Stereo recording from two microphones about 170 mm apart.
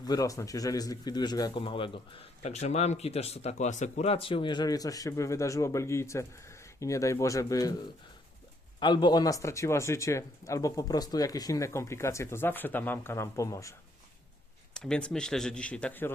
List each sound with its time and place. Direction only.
0.0 s speech: 20° left (ahead or behind)
8.8 s speech: 25° left (ahead or behind)
14.7 s speech: 5° left (ahead or behind)